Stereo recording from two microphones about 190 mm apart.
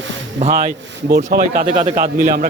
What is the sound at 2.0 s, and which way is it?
Speech, 45° right (ahead or behind).